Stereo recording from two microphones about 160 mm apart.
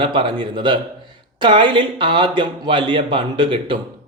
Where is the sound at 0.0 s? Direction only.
30° right (ahead or behind).